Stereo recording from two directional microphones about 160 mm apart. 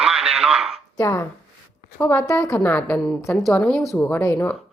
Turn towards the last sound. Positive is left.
turn(degrees=10)  # may be behind; listen again after turning